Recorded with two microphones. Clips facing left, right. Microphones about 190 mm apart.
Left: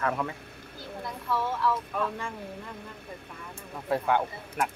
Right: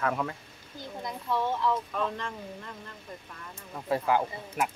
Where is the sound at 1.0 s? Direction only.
20° right (ahead or behind).